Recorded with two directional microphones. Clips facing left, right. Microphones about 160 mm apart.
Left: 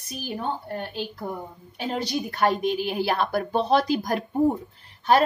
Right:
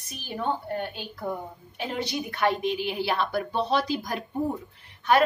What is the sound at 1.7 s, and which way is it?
A woman's voice, 35° left (ahead or behind).